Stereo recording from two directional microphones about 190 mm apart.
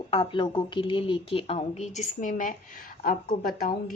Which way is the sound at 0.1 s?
25° left (ahead or behind).